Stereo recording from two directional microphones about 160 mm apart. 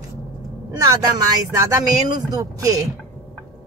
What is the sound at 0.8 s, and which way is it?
Speech, 25° right (ahead or behind).